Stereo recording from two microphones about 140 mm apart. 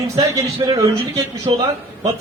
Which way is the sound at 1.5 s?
40° right (ahead or behind).